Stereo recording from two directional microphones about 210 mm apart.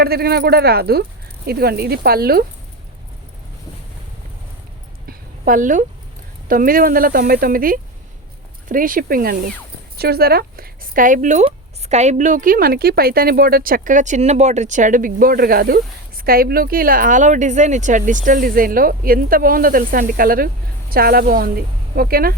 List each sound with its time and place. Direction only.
0.0 s speech: 50° right (ahead or behind)
5.0 s a sound: 40° right (ahead or behind)
6.5 s speech: 40° right (ahead or behind)